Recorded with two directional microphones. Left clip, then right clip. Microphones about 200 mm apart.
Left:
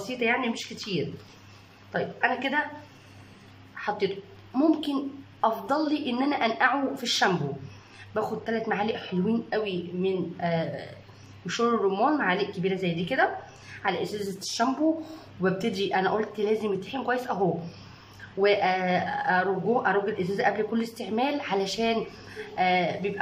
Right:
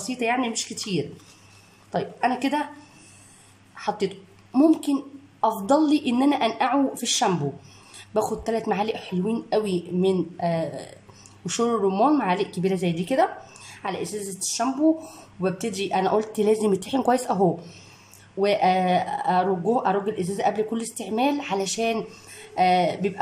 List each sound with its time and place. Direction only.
0.2 s speech: 20° right (ahead or behind)
3.7 s a woman's voice: 20° right (ahead or behind)
15.4 s a woman's voice: 10° right (ahead or behind)
18.4 s a woman's voice: 20° right (ahead or behind)